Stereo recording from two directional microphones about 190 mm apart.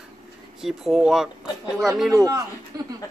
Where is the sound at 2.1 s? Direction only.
15° right (ahead or behind).